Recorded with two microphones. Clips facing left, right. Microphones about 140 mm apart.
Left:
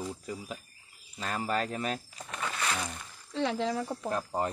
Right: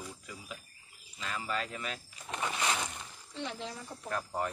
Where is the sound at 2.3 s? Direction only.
20° right (ahead or behind).